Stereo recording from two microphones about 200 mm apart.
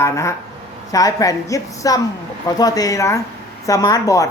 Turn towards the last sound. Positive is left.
turn(degrees=15)  # may be behind; listen again after turning